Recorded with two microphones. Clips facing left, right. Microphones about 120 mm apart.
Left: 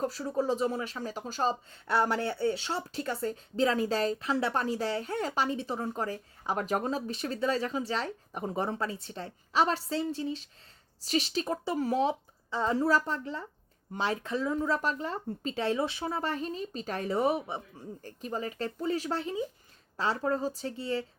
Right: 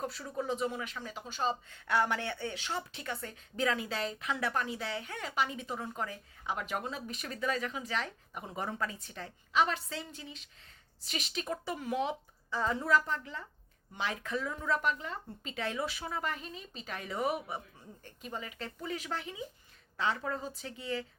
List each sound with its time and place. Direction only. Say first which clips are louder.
0.0 s speech: left 7 dB; 35° left (ahead or behind)
7.1 s speech: left 2 dB; 30° left (ahead or behind)